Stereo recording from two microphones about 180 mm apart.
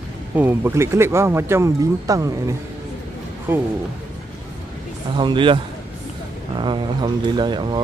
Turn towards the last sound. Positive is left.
turn(degrees=-25)  # may be behind; listen again after turning